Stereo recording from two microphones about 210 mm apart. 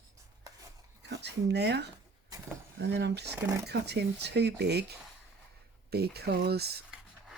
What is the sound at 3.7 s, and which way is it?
Speech, 50° right (ahead or behind).